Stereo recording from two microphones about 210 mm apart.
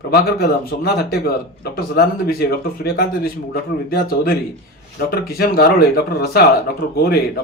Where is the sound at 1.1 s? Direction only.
45° left (ahead or behind).